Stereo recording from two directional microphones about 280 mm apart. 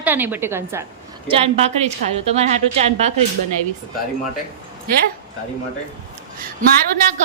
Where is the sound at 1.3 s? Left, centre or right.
Right.